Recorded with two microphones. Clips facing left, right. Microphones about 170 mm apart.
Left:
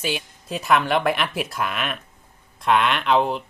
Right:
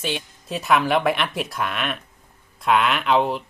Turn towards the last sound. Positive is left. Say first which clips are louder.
# even
turn(degrees=0)  # may be behind; listen again after turning